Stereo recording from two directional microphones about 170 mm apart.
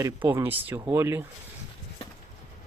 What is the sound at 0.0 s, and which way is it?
Speech, 15° right (ahead or behind).